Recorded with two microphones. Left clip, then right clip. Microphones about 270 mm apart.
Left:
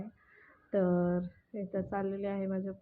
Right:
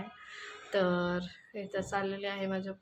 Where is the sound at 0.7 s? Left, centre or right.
Centre.